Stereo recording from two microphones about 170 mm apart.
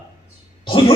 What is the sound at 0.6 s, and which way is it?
Speech, 30° left (ahead or behind).